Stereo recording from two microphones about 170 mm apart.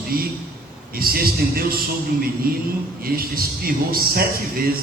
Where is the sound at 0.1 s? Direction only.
60° right (ahead or behind).